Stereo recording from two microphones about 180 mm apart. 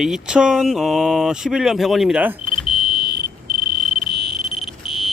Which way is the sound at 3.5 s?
Centre (ahead or behind).